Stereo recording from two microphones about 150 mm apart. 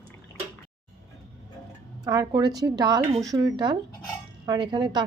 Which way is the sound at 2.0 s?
25° right (ahead or behind).